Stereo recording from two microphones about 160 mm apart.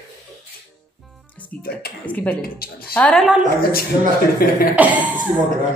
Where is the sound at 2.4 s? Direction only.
70° left (ahead or behind).